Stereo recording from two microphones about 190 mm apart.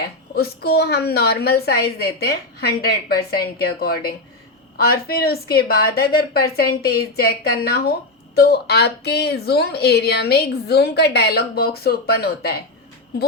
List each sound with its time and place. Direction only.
0.3 s speech: 55° left (ahead or behind)